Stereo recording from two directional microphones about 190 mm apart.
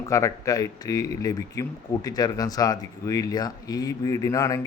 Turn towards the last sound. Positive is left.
turn(degrees=15)  # may be behind; listen again after turning